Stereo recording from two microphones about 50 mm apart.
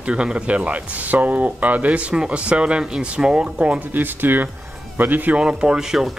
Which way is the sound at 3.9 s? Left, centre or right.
Right.